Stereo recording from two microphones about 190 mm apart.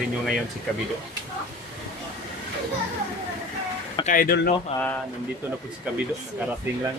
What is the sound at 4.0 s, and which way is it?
Speech, 45° left (ahead or behind).